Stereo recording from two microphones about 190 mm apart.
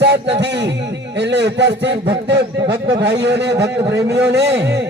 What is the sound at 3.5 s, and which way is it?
Speech, 15° right (ahead or behind).